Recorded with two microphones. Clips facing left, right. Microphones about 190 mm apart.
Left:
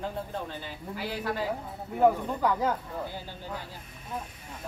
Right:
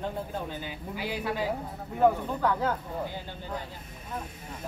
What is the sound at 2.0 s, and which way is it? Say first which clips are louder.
Speech: even; 10° left (ahead or behind).